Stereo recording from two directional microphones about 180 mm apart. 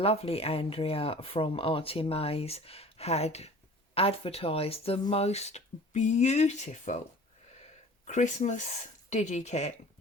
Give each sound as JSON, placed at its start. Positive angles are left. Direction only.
{"t": 0.0, "sound": "speech", "side_deg": 35}
{"t": 8.0, "sound": "speech", "side_deg": 40}